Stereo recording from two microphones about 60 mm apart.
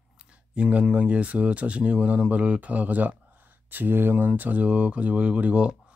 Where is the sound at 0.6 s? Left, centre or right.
Right.